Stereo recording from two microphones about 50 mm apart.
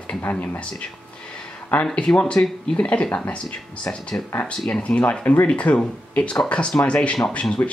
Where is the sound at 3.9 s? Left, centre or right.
Left.